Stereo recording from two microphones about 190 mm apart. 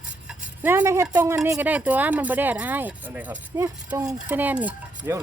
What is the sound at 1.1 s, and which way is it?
Speech, 15° right (ahead or behind).